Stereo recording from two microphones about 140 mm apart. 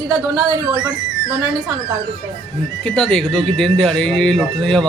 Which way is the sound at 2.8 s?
5° left (ahead or behind).